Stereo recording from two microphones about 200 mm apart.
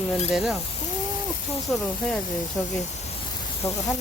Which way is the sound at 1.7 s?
5° left (ahead or behind).